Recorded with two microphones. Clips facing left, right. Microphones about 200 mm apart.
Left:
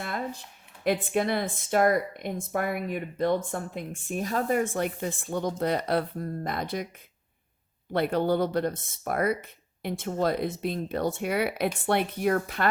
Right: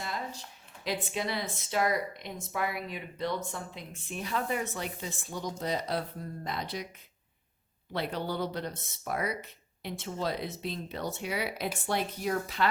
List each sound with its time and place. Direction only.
0.0 s a sound: 55° left (ahead or behind)
0.9 s speech: 55° left (ahead or behind)
7.9 s speech: 55° left (ahead or behind)